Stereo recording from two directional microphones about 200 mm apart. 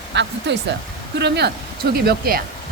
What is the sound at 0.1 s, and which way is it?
A woman's voice, 60° right (ahead or behind).